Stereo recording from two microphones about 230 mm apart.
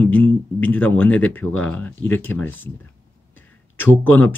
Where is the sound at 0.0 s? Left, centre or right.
Centre.